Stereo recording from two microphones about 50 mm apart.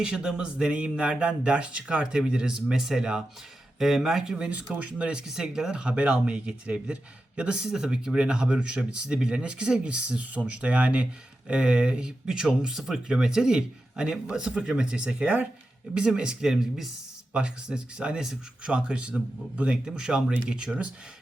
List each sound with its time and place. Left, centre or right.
0.0 s speech: centre
4.4 s speech: right
5.2 s speech: centre
17.3 s speech: centre
18.2 s speech: centre
18.7 s speech: right